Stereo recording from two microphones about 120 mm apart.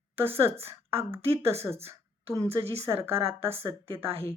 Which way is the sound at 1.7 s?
55° right (ahead or behind).